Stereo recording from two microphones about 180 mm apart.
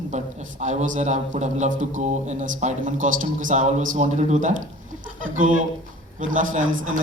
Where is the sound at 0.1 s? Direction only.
40° right (ahead or behind).